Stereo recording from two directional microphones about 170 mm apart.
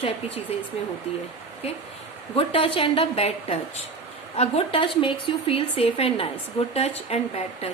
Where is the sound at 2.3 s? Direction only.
35° left (ahead or behind).